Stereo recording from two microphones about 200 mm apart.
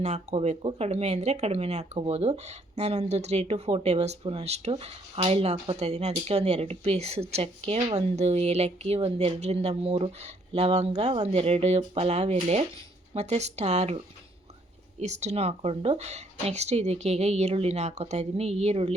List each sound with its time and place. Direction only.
0.0 s speech: 35° right (ahead or behind)